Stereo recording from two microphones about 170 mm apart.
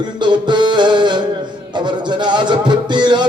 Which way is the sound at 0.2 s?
25° right (ahead or behind).